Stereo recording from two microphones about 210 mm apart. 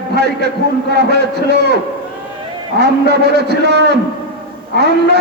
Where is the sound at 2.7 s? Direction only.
50° right (ahead or behind).